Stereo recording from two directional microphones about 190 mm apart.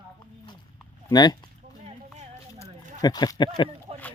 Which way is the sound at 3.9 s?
35° right (ahead or behind).